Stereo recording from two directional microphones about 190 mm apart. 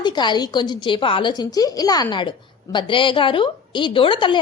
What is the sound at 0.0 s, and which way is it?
A woman's voice, 25° left (ahead or behind).